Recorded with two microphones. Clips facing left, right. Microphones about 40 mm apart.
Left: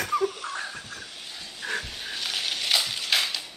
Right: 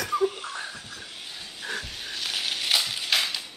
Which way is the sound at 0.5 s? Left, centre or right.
Left.